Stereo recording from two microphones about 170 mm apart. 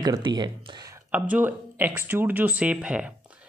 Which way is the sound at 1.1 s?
10° right (ahead or behind).